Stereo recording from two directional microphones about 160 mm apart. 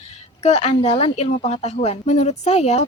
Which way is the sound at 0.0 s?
45° left (ahead or behind).